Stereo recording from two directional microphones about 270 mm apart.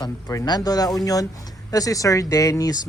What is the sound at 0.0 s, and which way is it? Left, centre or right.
Speech, centre.